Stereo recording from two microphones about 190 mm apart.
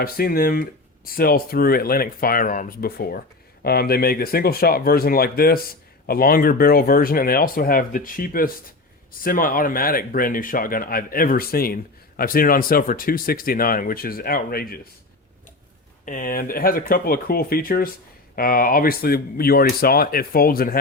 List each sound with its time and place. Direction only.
0.0 s speech: 50° left (ahead or behind)
16.0 s speech: 45° left (ahead or behind)